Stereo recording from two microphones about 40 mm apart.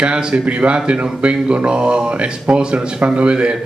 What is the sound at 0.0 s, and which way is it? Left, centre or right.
A man's voice, right.